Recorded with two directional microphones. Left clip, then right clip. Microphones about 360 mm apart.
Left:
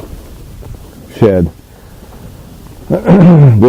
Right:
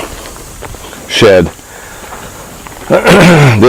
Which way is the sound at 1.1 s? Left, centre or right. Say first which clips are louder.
Right 5 dB; centre.